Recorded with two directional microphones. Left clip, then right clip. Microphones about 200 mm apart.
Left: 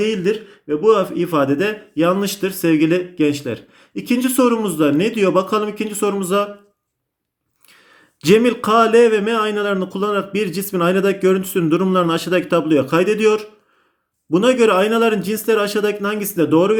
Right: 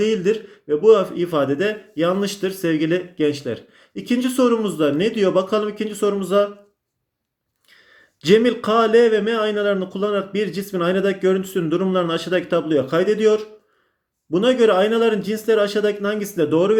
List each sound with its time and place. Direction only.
0.0 s a man's voice: 15° left (ahead or behind)
8.2 s a man's voice: 30° left (ahead or behind)